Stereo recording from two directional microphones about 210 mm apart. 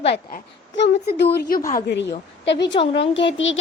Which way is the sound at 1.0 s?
50° left (ahead or behind).